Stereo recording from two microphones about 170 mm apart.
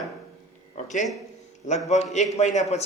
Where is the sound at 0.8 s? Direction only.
45° left (ahead or behind).